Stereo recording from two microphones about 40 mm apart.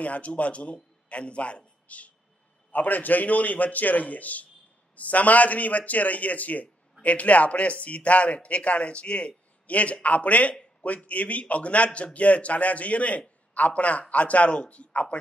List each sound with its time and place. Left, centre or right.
0.0 s a man's voice: left